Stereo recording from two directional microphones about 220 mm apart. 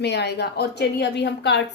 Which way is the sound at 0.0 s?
50° left (ahead or behind).